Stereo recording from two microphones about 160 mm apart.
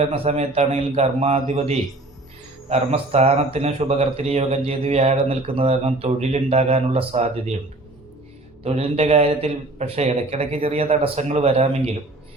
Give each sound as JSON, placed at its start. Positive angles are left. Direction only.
{"t": 0.0, "sound": "speech", "side_deg": -40}
{"t": 8.6, "sound": "speech", "side_deg": -40}